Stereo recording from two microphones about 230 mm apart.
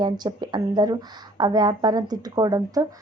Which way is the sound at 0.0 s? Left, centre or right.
Centre.